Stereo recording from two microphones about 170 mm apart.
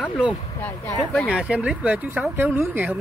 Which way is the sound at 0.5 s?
15° left (ahead or behind).